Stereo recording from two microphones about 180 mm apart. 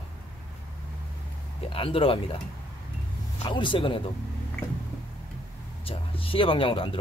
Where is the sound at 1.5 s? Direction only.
30° left (ahead or behind).